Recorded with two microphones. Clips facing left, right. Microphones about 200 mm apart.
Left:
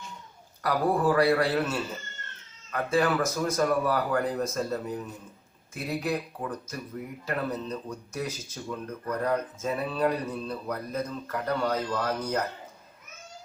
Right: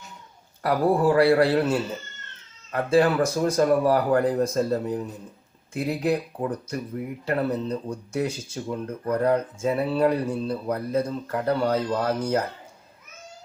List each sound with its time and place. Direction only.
0.6 s speech: 30° right (ahead or behind)
2.7 s speech: 30° right (ahead or behind)